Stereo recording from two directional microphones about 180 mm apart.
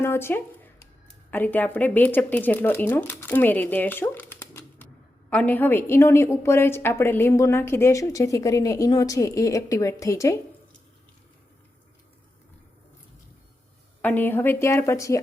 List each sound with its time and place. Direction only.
0.0 s a woman's voice: 15° left (ahead or behind)
14.0 s a woman's voice: 10° left (ahead or behind)